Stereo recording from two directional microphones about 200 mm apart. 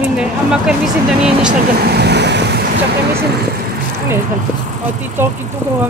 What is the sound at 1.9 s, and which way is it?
Vehicle, 55° right (ahead or behind).